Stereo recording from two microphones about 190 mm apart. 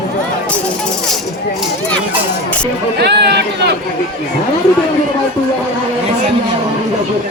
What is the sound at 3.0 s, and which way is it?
Chatter, 60° right (ahead or behind).